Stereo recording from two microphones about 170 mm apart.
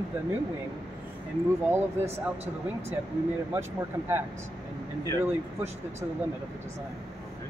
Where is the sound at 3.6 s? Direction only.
15° right (ahead or behind).